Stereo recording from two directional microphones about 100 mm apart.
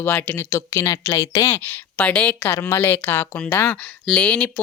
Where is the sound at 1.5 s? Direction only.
20° left (ahead or behind).